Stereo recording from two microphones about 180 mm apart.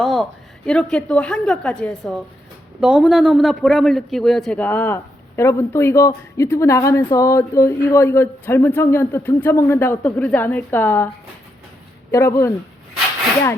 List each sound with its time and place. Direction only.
0.0 s a woman's voice: centre (ahead or behind)
12.1 s a man's voice: 15° left (ahead or behind)